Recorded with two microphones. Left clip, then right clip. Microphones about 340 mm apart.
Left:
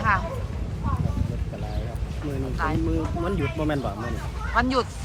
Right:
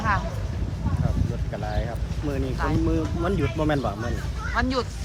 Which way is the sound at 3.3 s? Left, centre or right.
Centre.